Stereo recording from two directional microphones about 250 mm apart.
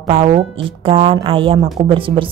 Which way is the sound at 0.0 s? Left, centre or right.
Right.